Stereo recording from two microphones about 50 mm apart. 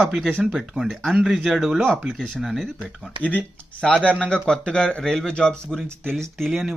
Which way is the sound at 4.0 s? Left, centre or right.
Left.